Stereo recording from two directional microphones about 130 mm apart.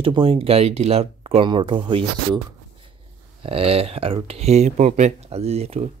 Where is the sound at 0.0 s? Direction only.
45° right (ahead or behind).